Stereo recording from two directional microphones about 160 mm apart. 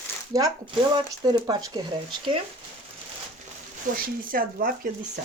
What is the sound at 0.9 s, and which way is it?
Speech, 25° right (ahead or behind).